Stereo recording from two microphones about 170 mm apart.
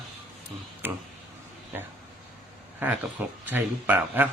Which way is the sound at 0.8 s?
10° right (ahead or behind).